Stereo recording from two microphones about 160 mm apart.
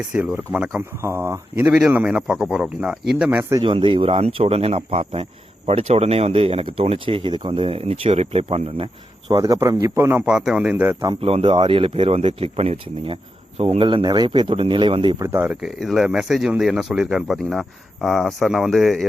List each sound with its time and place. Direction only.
0.1 s speech: 10° right (ahead or behind)
3.6 s speech: 30° right (ahead or behind)
9.3 s speech: 20° right (ahead or behind)
11.0 s speech: 30° right (ahead or behind)
15.2 s speech: 15° right (ahead or behind)
15.6 s speech: centre (ahead or behind)